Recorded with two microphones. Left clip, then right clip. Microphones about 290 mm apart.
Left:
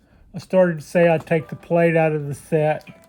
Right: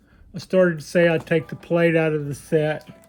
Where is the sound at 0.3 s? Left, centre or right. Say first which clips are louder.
Left 1 dB; centre.